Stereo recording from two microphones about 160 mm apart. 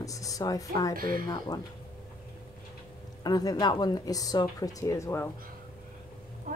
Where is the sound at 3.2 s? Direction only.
25° left (ahead or behind).